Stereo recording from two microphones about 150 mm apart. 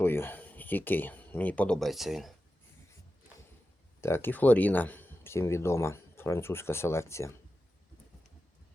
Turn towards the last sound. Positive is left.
turn(degrees=20)  # may be behind; listen again after turning